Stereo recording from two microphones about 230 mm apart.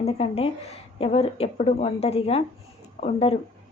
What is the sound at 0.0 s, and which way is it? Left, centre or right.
A woman's voice, left.